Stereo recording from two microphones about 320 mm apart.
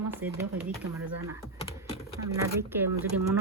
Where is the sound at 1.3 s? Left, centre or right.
Centre.